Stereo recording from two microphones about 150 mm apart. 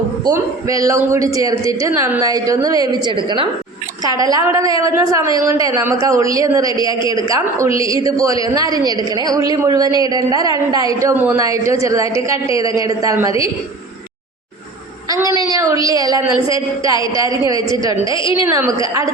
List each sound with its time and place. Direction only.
0.3 s a woman's voice: 25° right (ahead or behind)
1.9 s a woman's voice: 15° right (ahead or behind)
2.2 s a woman's voice: 25° right (ahead or behind)
15.1 s a woman's voice: 25° right (ahead or behind)